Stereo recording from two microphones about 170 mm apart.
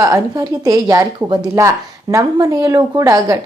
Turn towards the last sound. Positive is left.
turn(degrees=-20)  # may be behind; listen again after turning